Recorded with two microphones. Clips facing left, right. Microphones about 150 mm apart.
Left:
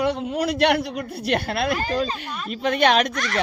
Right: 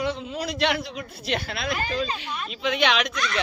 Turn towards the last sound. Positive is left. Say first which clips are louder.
# left 5 dB
turn(degrees=50)  # may be behind; listen again after turning